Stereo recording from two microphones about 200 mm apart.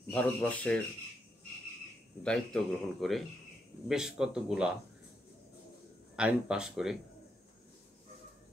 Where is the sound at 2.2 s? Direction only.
5° left (ahead or behind).